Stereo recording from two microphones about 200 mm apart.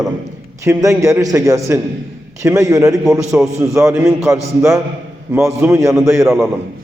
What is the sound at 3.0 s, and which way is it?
Speech, centre (ahead or behind).